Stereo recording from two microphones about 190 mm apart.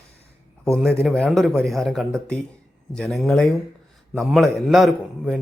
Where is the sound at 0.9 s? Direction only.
5° left (ahead or behind).